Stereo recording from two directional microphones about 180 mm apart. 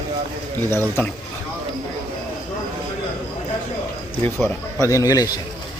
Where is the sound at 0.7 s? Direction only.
15° left (ahead or behind).